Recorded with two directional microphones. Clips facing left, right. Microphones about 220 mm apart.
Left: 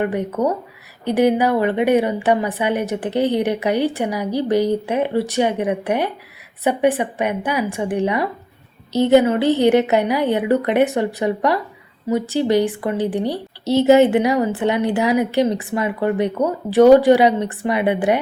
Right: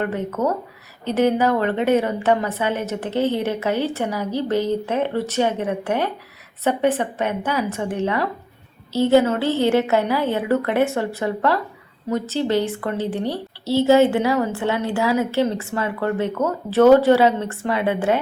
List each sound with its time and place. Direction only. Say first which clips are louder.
0.0 s a woman's voice: left 3 dB; 15° left (ahead or behind)